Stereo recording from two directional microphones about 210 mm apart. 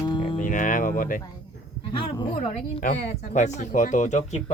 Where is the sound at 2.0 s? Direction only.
25° left (ahead or behind).